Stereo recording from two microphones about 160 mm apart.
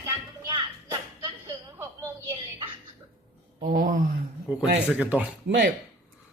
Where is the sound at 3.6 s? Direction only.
55° right (ahead or behind).